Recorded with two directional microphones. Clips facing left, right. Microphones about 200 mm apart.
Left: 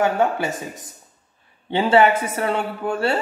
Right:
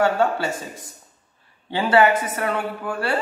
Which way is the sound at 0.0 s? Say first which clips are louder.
Even; 20° left (ahead or behind).